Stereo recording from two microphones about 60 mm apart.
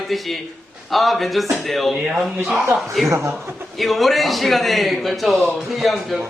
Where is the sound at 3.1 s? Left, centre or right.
Right.